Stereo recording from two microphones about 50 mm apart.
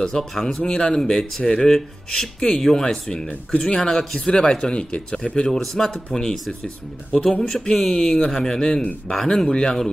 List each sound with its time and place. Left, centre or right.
0.0 s speech: centre
9.5 s speech: centre